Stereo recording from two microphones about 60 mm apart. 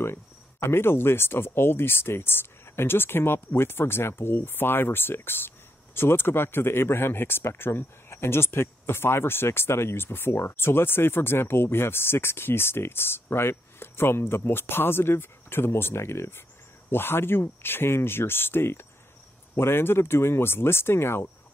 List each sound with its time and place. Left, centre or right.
0.0 s speech: left